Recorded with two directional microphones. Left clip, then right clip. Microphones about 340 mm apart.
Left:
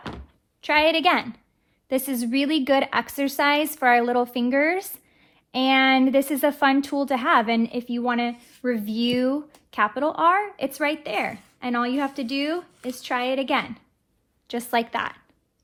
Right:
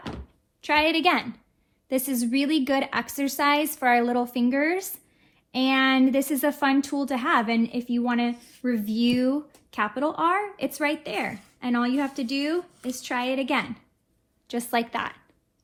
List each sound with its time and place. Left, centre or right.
0.6 s a woman's voice: left